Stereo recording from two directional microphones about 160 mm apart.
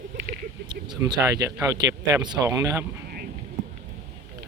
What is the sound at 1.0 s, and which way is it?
Speech, 25° right (ahead or behind).